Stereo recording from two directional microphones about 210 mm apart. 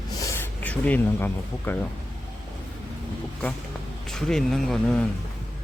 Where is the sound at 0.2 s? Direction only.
10° left (ahead or behind).